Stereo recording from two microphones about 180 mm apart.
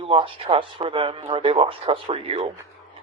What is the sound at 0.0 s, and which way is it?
Speech, 30° right (ahead or behind).